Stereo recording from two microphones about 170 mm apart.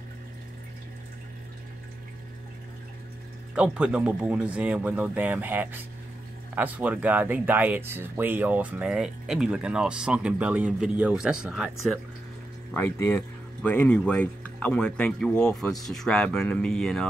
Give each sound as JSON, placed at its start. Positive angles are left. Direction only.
{"t": 3.5, "sound": "speech", "side_deg": -5}
{"t": 12.7, "sound": "speech", "side_deg": 10}